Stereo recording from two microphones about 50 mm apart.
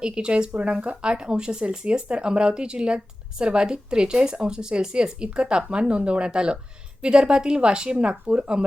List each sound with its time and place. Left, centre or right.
0.0 s speech: centre